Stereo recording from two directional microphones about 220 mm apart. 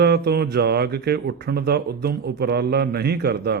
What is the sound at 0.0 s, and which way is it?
Speech, 45° right (ahead or behind).